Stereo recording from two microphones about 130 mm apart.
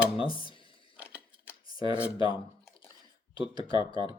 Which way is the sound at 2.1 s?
40° left (ahead or behind).